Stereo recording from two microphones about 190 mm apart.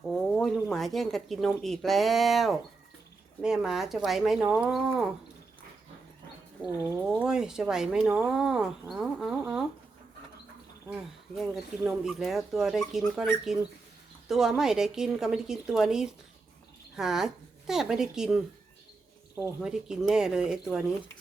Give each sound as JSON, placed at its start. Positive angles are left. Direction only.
{"t": 0.1, "sound": "speech", "side_deg": 5}
{"t": 6.7, "sound": "speech", "side_deg": -10}
{"t": 10.8, "sound": "speech", "side_deg": -5}